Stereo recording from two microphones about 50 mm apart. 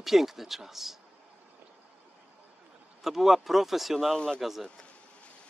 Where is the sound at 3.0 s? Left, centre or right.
Centre.